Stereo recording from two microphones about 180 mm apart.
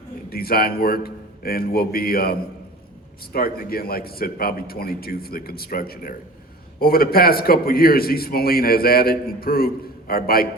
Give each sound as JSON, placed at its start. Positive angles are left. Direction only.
{"t": 0.3, "sound": "a man's voice", "side_deg": 55}